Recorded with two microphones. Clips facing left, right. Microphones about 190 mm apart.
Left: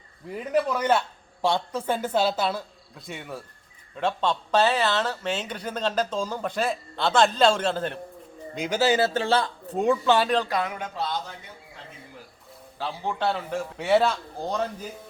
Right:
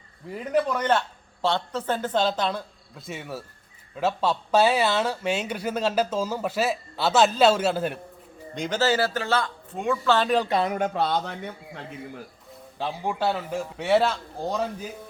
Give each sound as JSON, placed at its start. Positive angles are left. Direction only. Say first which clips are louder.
{"t": 0.5, "sound": "a woman's voice", "louder": "even", "side_deg": 5}
{"t": 8.5, "sound": "a man's voice", "louder": "left 1 dB", "side_deg": 10}
{"t": 10.0, "sound": "a woman's voice", "louder": "right 2 dB", "side_deg": 15}
{"t": 10.2, "sound": "speech", "louder": "right 1 dB", "side_deg": -10}
{"t": 10.5, "sound": "speech", "louder": "right 5 dB", "side_deg": -40}
{"t": 12.8, "sound": "a man's voice", "louder": "right 1 dB", "side_deg": -10}